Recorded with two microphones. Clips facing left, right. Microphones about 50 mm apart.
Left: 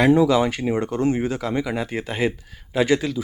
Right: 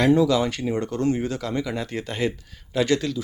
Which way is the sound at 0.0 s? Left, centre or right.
Centre.